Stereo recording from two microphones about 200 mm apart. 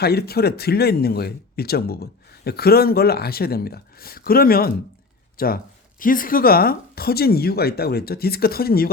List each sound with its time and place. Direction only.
0.0 s speech: 50° left (ahead or behind)